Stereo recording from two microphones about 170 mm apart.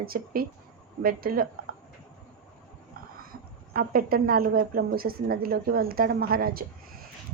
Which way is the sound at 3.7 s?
60° right (ahead or behind).